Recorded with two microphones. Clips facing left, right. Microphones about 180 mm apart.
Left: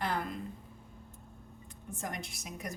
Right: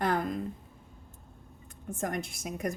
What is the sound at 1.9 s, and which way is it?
Speech, 50° right (ahead or behind).